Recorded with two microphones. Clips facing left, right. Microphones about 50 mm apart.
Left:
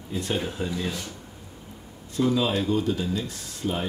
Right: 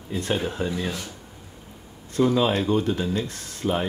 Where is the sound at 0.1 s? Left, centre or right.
Right.